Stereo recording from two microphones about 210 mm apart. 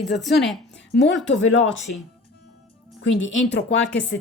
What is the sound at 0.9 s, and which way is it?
Speech, 60° left (ahead or behind).